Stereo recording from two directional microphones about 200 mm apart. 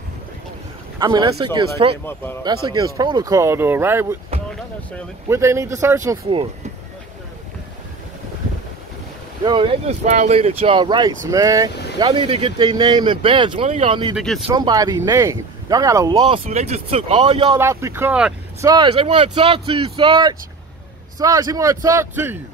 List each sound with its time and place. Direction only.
0.9 s speech: 20° right (ahead or behind)
5.3 s speech: 15° right (ahead or behind)
9.4 s speech: 25° right (ahead or behind)
14.1 s speech: centre (ahead or behind)
14.5 s speech: 20° right (ahead or behind)
17.6 s speech: 15° right (ahead or behind)
18.6 s speech: 20° right (ahead or behind)